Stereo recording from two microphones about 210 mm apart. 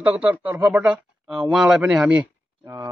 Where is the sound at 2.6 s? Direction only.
15° right (ahead or behind).